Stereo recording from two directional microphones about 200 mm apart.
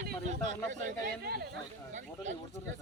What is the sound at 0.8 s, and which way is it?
Speech, 50° right (ahead or behind).